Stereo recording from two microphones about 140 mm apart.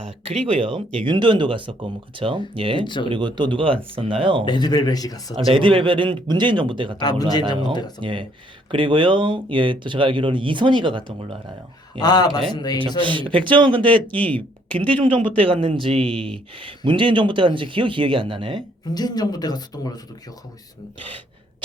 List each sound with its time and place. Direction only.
0.3 s speech: 40° right (ahead or behind)
2.8 s speech: 35° left (ahead or behind)
3.1 s speech: 35° right (ahead or behind)
4.4 s speech: 30° left (ahead or behind)
5.5 s speech: 40° right (ahead or behind)
7.0 s speech: 30° left (ahead or behind)
8.0 s speech: 35° right (ahead or behind)
11.9 s speech: 30° left (ahead or behind)
13.0 s speech: 35° right (ahead or behind)
16.1 s speech: 5° left (ahead or behind)
16.6 s speech: 35° right (ahead or behind)
18.9 s speech: 30° left (ahead or behind)